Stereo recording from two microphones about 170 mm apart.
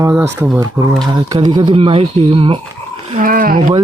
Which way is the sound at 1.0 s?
20° right (ahead or behind).